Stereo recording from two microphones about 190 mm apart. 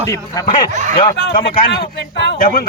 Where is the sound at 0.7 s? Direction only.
40° right (ahead or behind).